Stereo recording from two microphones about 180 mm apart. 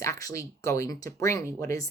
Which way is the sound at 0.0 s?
20° left (ahead or behind).